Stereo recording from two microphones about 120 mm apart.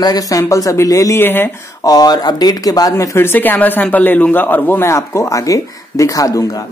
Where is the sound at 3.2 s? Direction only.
15° left (ahead or behind).